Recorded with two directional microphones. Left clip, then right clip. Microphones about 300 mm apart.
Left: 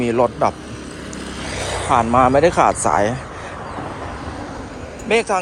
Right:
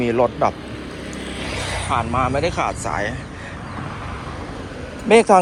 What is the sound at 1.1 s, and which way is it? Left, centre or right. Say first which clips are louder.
Vehicle: even; centre.